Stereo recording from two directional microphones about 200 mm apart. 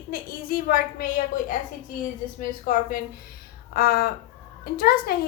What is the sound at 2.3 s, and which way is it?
A woman's voice, 45° left (ahead or behind).